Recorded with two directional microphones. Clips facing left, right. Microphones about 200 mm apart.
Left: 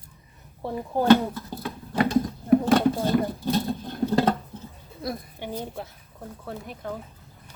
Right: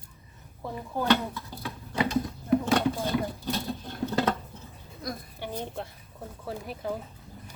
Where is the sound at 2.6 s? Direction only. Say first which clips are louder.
Left 5 dB; 50° left (ahead or behind).